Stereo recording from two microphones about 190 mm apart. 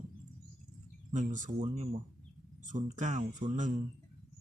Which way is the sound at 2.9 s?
40° right (ahead or behind).